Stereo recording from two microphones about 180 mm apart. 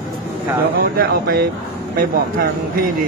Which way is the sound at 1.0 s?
55° right (ahead or behind).